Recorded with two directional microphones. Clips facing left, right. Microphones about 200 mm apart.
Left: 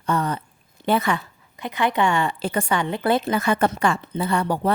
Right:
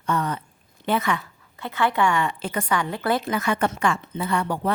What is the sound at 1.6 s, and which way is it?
A woman's voice, 15° left (ahead or behind).